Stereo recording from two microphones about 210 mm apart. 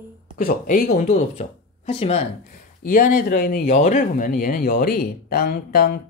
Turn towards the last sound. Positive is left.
turn(degrees=40)  # may be behind; listen again after turning